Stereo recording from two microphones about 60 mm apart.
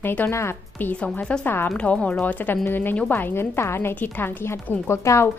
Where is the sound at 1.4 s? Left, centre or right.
Left.